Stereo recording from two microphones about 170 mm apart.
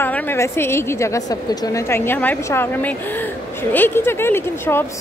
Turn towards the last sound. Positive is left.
turn(degrees=15)  # may be behind; listen again after turning